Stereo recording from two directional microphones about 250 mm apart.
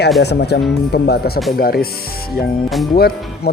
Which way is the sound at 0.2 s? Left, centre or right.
Left.